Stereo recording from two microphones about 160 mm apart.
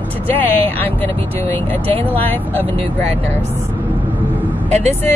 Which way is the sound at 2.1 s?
10° left (ahead or behind).